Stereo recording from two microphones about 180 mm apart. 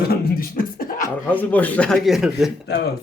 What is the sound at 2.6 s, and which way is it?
Speech, 60° left (ahead or behind).